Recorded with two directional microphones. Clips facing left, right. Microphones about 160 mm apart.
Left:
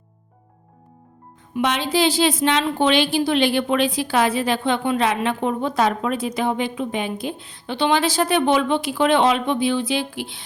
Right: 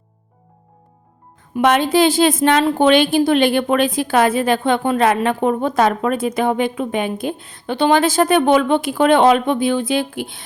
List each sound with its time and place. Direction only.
1.5 s a woman's voice: 50° right (ahead or behind)